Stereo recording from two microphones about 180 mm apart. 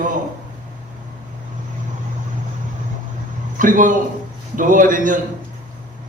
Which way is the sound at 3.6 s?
45° right (ahead or behind).